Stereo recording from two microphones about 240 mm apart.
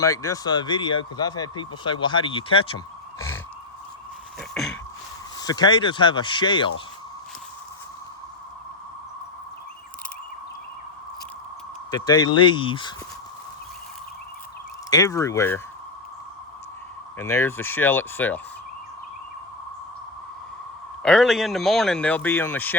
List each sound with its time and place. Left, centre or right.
0.0 s speech: centre
4.4 s a sound: centre
5.4 s speech: centre
11.9 s speech: centre
14.8 s speech: centre
17.2 s speech: centre
21.0 s speech: centre